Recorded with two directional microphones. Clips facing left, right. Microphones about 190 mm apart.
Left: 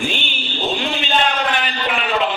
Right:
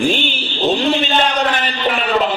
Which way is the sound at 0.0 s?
40° right (ahead or behind).